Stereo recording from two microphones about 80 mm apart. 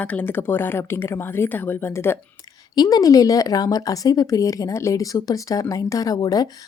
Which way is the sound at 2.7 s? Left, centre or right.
Left.